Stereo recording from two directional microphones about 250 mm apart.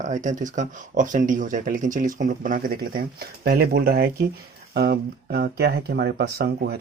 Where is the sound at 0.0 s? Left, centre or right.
Right.